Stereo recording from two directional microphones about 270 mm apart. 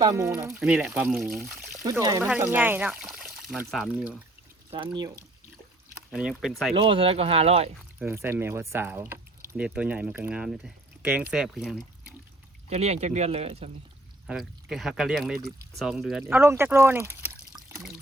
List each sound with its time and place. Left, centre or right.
0.0 s speech: centre
4.7 s speech: centre
6.1 s speech: centre
6.7 s speech: centre
7.9 s speech: centre
12.7 s speech: right
14.3 s speech: centre
15.4 s speech: centre
15.8 s speech: centre